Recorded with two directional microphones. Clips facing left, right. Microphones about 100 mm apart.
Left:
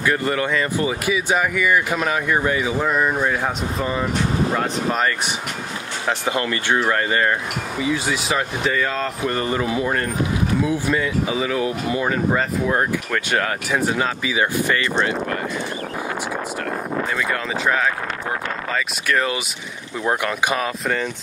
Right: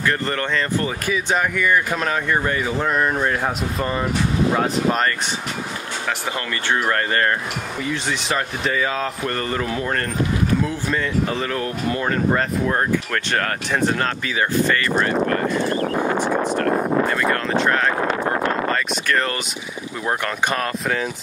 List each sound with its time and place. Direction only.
0.0 s speech: 10° left (ahead or behind)
6.0 s speech: 20° left (ahead or behind); by 9.1 s 5° right (ahead or behind)
9.2 s speech: 10° left (ahead or behind)
16.0 s speech: 50° right (ahead or behind)
17.3 s speech: centre (ahead or behind)
18.0 s a sound: 30° right (ahead or behind)
18.7 s speech: 10° left (ahead or behind)